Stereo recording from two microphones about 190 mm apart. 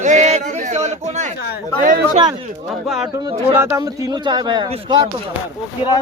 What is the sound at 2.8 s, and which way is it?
Speech, centre (ahead or behind).